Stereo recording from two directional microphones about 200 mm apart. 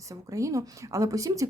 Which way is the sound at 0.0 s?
15° right (ahead or behind).